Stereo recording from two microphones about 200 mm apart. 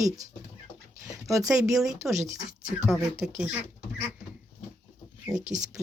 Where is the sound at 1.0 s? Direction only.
15° right (ahead or behind).